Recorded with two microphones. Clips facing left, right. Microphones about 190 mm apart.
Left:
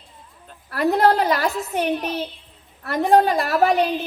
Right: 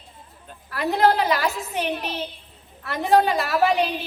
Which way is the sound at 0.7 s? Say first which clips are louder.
Left 2 dB; 45° left (ahead or behind).